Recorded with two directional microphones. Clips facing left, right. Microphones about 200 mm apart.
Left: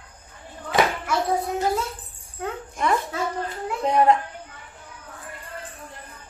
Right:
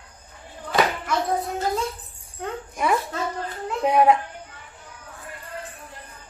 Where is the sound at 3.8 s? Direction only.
10° right (ahead or behind).